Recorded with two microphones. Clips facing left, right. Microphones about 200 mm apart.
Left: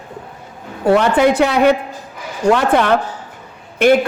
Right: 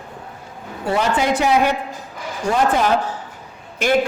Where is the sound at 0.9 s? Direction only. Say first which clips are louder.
Left 7 dB; 60° left (ahead or behind).